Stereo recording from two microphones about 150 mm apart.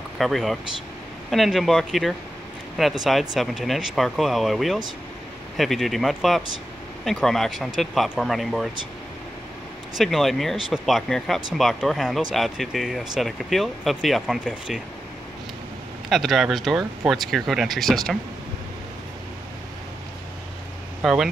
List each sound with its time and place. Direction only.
0.2 s speech: centre (ahead or behind)
9.9 s speech: centre (ahead or behind)
16.1 s speech: centre (ahead or behind)
21.0 s speech: centre (ahead or behind)